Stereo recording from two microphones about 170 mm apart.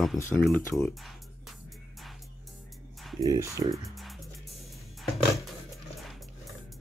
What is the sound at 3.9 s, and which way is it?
Music, centre (ahead or behind).